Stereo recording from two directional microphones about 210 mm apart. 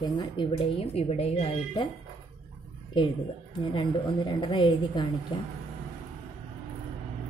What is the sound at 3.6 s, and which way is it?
A woman's voice, 25° left (ahead or behind).